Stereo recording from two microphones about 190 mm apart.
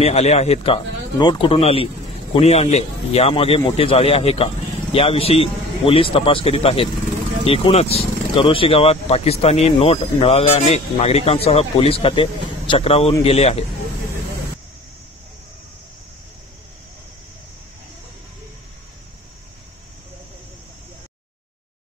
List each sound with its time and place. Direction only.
0.0 s speech: 35° left (ahead or behind)